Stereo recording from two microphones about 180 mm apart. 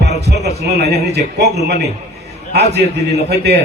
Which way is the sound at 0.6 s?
65° right (ahead or behind).